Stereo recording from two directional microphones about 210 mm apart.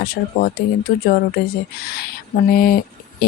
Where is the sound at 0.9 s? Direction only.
40° left (ahead or behind).